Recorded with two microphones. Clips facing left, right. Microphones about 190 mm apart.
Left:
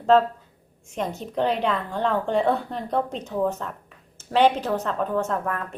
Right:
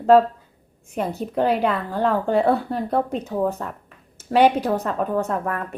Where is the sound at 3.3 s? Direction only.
40° right (ahead or behind).